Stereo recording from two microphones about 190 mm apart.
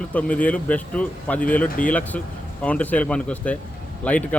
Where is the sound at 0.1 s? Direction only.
5° left (ahead or behind).